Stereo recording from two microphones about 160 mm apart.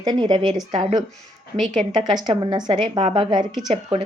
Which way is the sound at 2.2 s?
30° right (ahead or behind).